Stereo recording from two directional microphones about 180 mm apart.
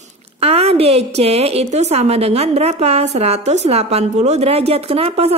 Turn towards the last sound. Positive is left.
turn(degrees=-35)  # may be behind; listen again after turning